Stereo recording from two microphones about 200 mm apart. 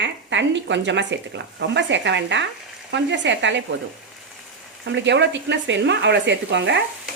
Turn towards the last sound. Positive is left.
turn(degrees=-60)  # may be behind; listen again after turning